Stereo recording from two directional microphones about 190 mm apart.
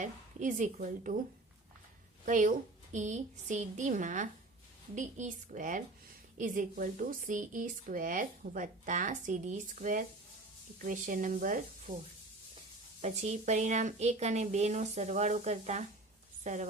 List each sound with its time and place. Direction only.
0.0 s speech: 40° right (ahead or behind)
2.2 s speech: 40° right (ahead or behind)
13.0 s speech: 40° right (ahead or behind)